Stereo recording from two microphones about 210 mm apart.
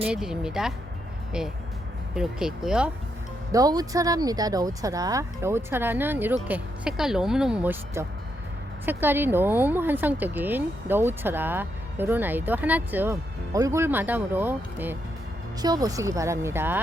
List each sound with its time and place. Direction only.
0.0 s speech: 5° right (ahead or behind)
3.5 s speech: 15° right (ahead or behind)